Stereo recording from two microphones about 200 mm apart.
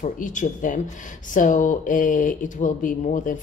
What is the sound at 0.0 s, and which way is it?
A woman's voice, 40° left (ahead or behind).